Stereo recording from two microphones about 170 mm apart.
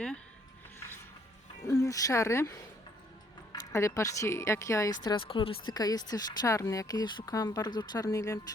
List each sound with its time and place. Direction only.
1.8 s speech: 20° left (ahead or behind)
3.5 s speech: 15° left (ahead or behind)
5.0 s speech: 30° left (ahead or behind)